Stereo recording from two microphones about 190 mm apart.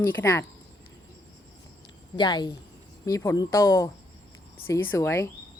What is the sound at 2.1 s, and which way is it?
Speech, 25° left (ahead or behind).